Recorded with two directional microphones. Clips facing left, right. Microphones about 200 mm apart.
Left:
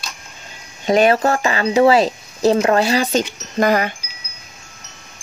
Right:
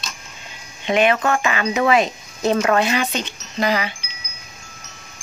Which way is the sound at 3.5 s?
50° left (ahead or behind).